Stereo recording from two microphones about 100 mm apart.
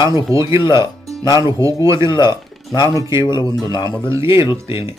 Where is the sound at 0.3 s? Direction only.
30° right (ahead or behind).